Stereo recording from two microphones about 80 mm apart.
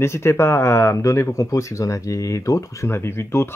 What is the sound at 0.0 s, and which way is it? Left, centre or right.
Speech, left.